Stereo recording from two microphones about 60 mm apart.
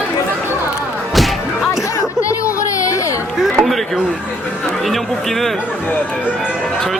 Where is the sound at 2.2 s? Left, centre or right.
Left.